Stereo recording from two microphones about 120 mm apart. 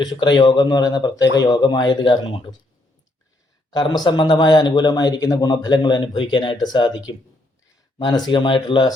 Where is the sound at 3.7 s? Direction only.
40° left (ahead or behind).